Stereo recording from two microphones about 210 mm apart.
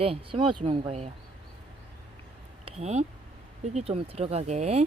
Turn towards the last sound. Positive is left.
turn(degrees=-30)  # may be behind; listen again after turning